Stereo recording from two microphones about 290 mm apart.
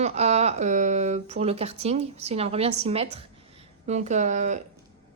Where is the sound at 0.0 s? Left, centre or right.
Right.